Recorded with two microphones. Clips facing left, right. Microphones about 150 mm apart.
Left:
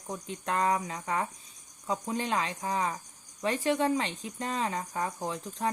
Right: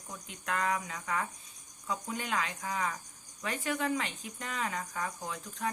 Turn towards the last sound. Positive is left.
turn(degrees=30)  # may be behind; listen again after turning